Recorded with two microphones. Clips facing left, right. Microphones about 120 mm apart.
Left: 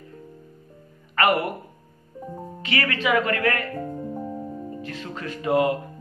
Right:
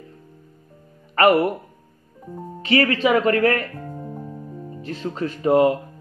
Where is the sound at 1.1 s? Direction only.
35° right (ahead or behind).